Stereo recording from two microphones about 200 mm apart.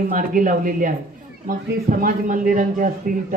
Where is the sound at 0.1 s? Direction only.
45° right (ahead or behind).